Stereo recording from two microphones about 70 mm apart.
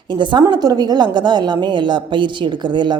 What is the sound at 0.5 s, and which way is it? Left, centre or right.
Speech, right.